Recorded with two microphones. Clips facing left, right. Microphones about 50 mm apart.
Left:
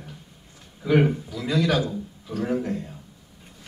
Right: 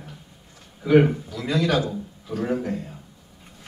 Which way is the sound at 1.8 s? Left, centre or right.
Centre.